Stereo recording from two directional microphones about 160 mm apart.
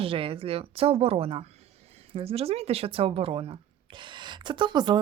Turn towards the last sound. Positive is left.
turn(degrees=-30)  # may be behind; listen again after turning